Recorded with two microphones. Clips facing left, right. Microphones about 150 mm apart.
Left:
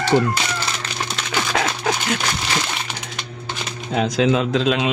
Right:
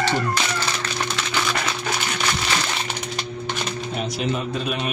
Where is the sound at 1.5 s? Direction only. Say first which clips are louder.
Left 4 dB; 90° left.